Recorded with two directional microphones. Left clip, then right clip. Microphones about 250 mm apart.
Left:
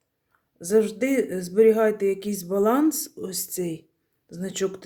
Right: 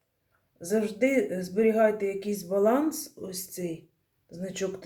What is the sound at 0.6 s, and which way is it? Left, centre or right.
Speech, left.